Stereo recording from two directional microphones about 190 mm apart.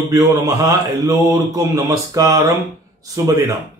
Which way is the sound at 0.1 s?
20° right (ahead or behind).